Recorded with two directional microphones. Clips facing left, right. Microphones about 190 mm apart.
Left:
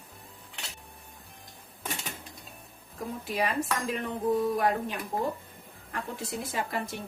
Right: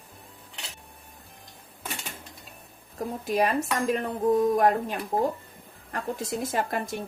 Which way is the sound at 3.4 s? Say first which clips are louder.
Right 5 dB; 45° right (ahead or behind).